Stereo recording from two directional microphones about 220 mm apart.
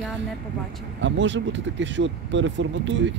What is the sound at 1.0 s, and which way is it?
Speech, 55° right (ahead or behind).